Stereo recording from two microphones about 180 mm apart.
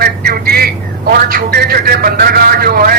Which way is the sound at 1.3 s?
55° right (ahead or behind).